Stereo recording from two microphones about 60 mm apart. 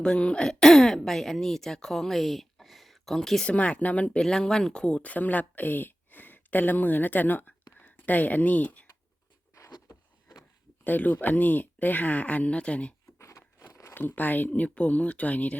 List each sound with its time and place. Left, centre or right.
0.0 s speech: centre
3.4 s speech: left
4.2 s speech: centre
9.6 s a sound: left
10.8 s speech: left
13.1 s a sound: left
13.9 s speech: left